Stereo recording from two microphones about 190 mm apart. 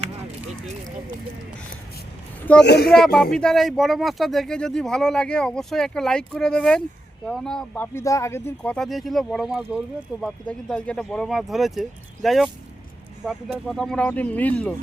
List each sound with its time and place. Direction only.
2.6 s speech: 60° left (ahead or behind)
2.9 s speech: centre (ahead or behind)
13.7 s speech: 5° left (ahead or behind)